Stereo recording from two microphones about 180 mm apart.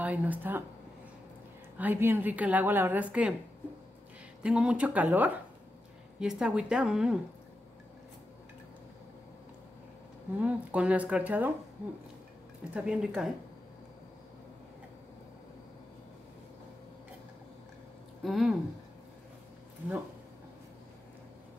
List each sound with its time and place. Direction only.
0.0 s a woman's voice: 10° right (ahead or behind)
1.8 s a woman's voice: 10° right (ahead or behind)
4.4 s a woman's voice: 5° right (ahead or behind)
10.4 s a woman's voice: 5° right (ahead or behind)
12.7 s speech: 5° right (ahead or behind)
18.2 s speech: centre (ahead or behind)